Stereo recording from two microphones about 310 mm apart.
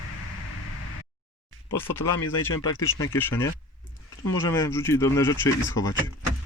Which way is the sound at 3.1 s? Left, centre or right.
Centre.